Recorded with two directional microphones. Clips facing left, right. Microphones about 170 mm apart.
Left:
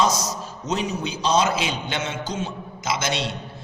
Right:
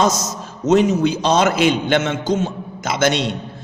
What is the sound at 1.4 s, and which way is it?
Speech, 60° right (ahead or behind).